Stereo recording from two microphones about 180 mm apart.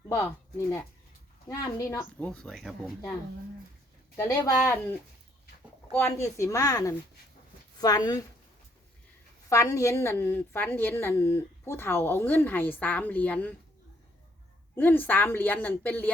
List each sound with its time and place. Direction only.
0.1 s a woman's voice: 15° left (ahead or behind)
4.2 s a woman's voice: 15° left (ahead or behind)
9.5 s a woman's voice: 15° left (ahead or behind)
14.8 s a woman's voice: 10° left (ahead or behind)